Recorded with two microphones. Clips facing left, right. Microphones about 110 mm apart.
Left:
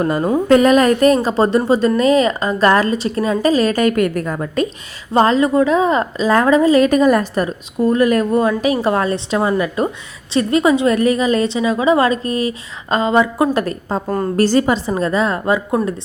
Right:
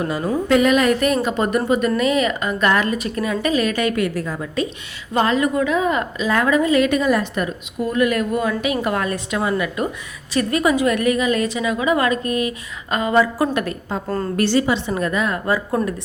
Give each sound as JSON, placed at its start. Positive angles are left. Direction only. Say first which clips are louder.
{"t": 0.0, "sound": "a woman's voice", "louder": "left 5 dB", "side_deg": 45}
{"t": 5.1, "sound": "a woman's voice", "louder": "left 5 dB", "side_deg": 35}
{"t": 13.5, "sound": "a woman's voice", "louder": "left 4 dB", "side_deg": 35}